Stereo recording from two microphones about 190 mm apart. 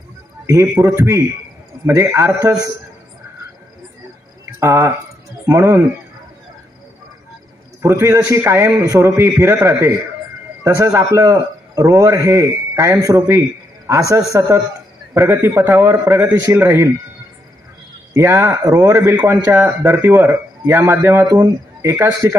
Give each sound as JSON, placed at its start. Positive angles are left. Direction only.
{"t": 0.5, "sound": "a man's voice", "side_deg": -15}
{"t": 4.6, "sound": "a man's voice", "side_deg": -15}
{"t": 7.8, "sound": "a man's voice", "side_deg": -15}
{"t": 18.1, "sound": "a man's voice", "side_deg": -15}